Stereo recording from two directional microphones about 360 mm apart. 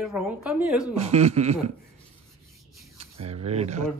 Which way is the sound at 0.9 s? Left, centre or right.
Centre.